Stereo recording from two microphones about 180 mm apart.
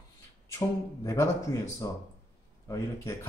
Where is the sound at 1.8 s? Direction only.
20° left (ahead or behind).